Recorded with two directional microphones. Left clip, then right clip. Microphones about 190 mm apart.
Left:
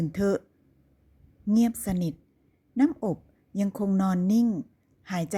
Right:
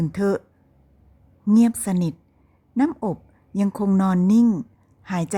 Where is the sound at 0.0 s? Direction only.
5° right (ahead or behind).